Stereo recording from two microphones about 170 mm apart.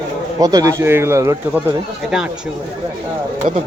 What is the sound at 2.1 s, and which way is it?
Speech, 5° right (ahead or behind).